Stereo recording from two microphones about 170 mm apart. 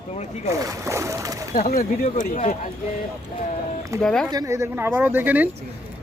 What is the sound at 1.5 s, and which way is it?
Speech, 50° left (ahead or behind).